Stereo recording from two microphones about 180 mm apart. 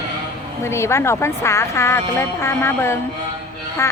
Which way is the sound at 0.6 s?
15° left (ahead or behind).